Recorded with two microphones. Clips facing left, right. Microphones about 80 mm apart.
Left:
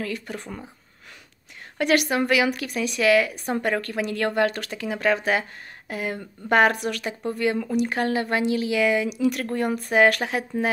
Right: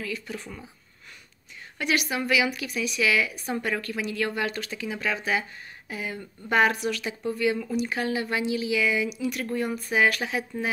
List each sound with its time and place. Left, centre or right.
0.0 s speech: left
1.8 s speech: left